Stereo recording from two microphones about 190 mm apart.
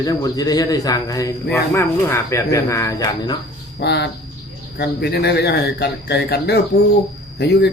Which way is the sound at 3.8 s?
60° left (ahead or behind).